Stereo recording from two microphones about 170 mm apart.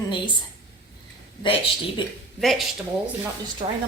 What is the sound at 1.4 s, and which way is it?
Speech, 30° left (ahead or behind).